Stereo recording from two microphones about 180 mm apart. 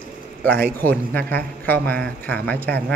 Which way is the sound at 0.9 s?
10° left (ahead or behind).